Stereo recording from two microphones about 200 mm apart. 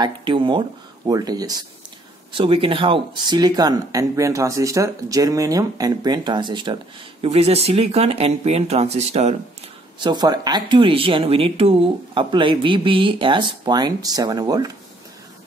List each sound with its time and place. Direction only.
0.0 s speech: 25° right (ahead or behind)
9.9 s speech: 20° right (ahead or behind)